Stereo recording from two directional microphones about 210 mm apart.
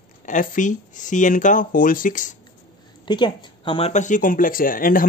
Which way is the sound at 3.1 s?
20° left (ahead or behind).